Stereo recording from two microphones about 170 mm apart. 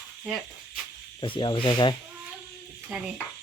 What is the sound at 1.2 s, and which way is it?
Speech, 30° left (ahead or behind).